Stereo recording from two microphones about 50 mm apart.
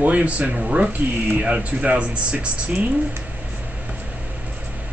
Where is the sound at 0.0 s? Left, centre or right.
Right.